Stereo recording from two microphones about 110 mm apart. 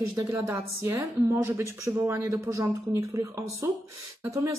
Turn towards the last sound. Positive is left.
turn(degrees=-30)  # may be behind; listen again after turning